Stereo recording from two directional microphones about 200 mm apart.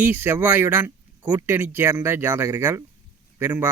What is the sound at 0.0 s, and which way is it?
Speech, 10° right (ahead or behind).